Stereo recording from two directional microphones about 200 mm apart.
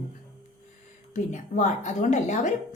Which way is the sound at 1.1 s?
35° left (ahead or behind).